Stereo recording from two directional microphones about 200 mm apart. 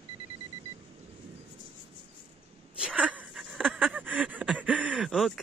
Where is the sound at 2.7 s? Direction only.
5° right (ahead or behind).